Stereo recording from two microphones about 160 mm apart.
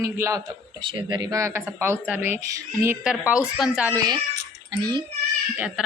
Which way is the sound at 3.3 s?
5° right (ahead or behind).